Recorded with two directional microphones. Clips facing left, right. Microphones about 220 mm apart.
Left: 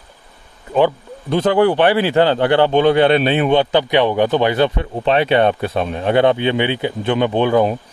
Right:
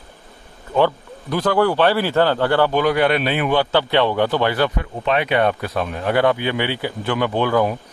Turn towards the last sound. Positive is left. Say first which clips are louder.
# left 3 dB
turn(degrees=20)  # may be behind; listen again after turning